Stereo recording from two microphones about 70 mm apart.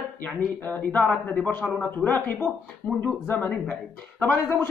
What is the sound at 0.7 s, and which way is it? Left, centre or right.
Speech, left.